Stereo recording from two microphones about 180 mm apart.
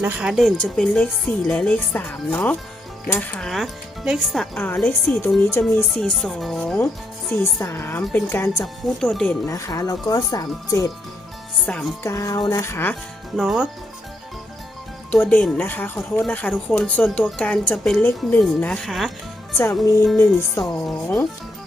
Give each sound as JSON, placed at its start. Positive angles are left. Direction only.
{"t": 0.0, "sound": "speech", "side_deg": -5}
{"t": 7.6, "sound": "speech", "side_deg": 15}
{"t": 9.5, "sound": "speech", "side_deg": 20}
{"t": 11.6, "sound": "speech", "side_deg": 5}
{"t": 12.0, "sound": "speech", "side_deg": 20}
{"t": 13.3, "sound": "speech", "side_deg": 0}
{"t": 15.1, "sound": "speech", "side_deg": 10}
{"t": 20.1, "sound": "speech", "side_deg": 15}
{"t": 20.8, "sound": "speech", "side_deg": 5}